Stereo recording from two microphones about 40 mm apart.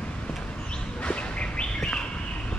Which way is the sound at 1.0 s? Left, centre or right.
Left.